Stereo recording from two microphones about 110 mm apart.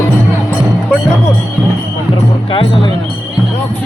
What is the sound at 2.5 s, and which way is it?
Speech, 55° left (ahead or behind).